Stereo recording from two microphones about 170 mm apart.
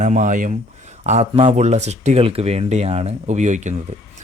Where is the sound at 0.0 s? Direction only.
45° right (ahead or behind).